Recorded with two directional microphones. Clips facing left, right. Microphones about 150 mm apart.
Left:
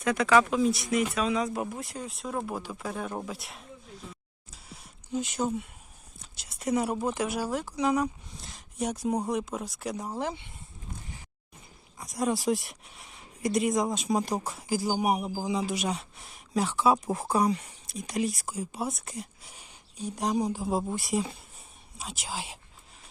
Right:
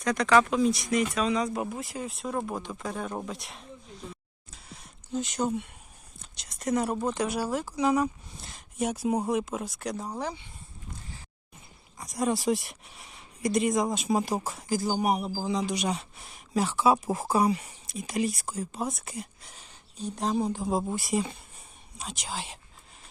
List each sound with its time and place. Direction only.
0.0 s a man's voice: 5° left (ahead or behind)
4.5 s a sound: 5° left (ahead or behind)
6.3 s a man's voice: 5° left (ahead or behind)
10.2 s speech: 20° left (ahead or behind)
11.9 s a man's voice: centre (ahead or behind)
14.7 s a man's voice: 10° left (ahead or behind)
18.5 s a man's voice: 10° left (ahead or behind)
19.5 s a man's voice: 10° left (ahead or behind)